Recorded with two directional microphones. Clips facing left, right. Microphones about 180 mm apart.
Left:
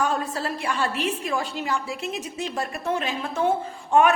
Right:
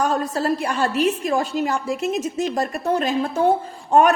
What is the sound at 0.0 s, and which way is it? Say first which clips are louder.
A woman's voice: right 4 dB; 40° right (ahead or behind).